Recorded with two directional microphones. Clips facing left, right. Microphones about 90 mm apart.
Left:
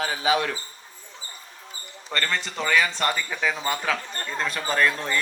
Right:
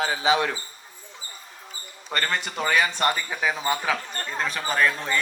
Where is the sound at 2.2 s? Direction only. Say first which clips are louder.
Right 1 dB; 20° right (ahead or behind).